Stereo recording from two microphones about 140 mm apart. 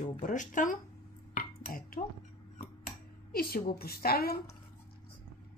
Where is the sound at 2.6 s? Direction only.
90° left.